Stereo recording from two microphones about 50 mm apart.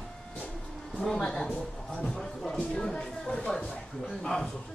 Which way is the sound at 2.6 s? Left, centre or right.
Centre.